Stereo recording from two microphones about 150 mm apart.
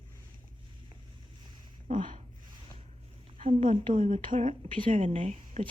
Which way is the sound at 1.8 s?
60° right (ahead or behind).